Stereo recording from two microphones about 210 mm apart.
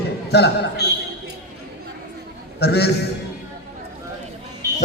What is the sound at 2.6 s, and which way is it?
Speech, 50° left (ahead or behind).